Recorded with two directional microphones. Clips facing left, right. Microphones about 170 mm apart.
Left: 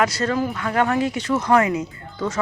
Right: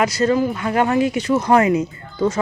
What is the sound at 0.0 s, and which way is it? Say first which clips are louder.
Speech: right 4 dB; 15° right (ahead or behind).